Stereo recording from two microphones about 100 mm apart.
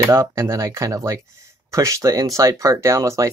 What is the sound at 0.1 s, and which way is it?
Speech, 25° right (ahead or behind).